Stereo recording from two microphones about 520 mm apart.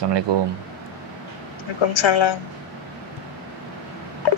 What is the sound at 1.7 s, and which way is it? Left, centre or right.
Speech, left.